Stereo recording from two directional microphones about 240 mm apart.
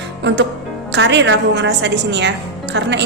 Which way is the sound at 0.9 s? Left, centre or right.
Right.